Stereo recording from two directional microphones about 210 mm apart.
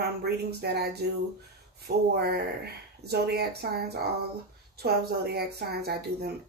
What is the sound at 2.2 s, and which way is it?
Speech, 50° right (ahead or behind).